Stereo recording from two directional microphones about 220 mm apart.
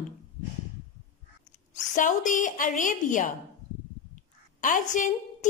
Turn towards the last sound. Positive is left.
turn(degrees=35)  # may be behind; listen again after turning